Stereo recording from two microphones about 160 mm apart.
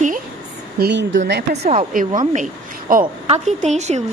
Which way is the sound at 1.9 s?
60° right (ahead or behind).